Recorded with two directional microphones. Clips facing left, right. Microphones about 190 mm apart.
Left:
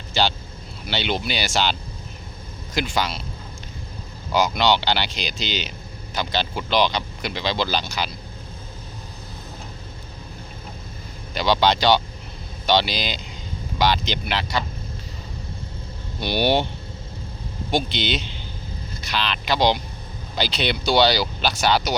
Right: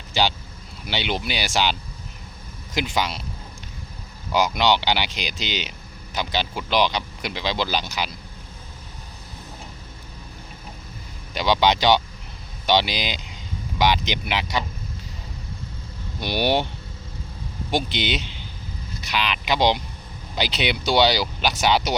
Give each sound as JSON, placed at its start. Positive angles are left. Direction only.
{"t": 0.1, "sound": "speech", "side_deg": -15}
{"t": 2.7, "sound": "speech", "side_deg": -15}
{"t": 4.4, "sound": "speech", "side_deg": -15}
{"t": 11.3, "sound": "speech", "side_deg": -15}
{"t": 16.2, "sound": "speech", "side_deg": -15}
{"t": 17.7, "sound": "speech", "side_deg": -15}